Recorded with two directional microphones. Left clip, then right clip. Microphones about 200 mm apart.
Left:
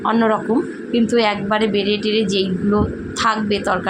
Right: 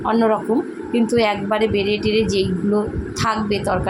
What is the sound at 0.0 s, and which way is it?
Speech, centre (ahead or behind).